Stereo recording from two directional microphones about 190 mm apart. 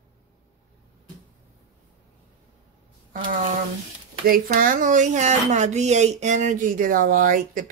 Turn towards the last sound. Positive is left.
turn(degrees=-45)  # may be behind; listen again after turning